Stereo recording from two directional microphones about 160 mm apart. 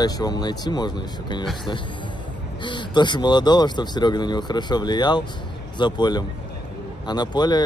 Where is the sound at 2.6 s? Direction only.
30° left (ahead or behind).